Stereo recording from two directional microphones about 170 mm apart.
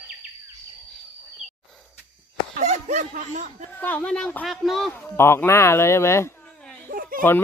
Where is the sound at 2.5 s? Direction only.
45° right (ahead or behind).